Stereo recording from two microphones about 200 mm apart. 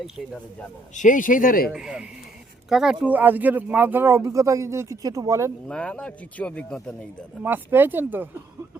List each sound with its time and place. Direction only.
0.9 s speech: 40° left (ahead or behind)
1.7 s speech: 5° right (ahead or behind)
5.6 s speech: 5° left (ahead or behind)
7.4 s speech: 10° right (ahead or behind)